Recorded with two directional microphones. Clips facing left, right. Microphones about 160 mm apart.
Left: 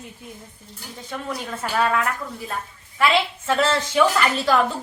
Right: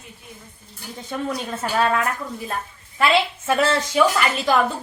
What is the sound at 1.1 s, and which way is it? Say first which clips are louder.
A woman's voice: right 3 dB; 25° right (ahead or behind).